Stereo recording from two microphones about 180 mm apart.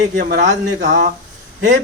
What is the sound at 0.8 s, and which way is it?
Speech, 50° right (ahead or behind).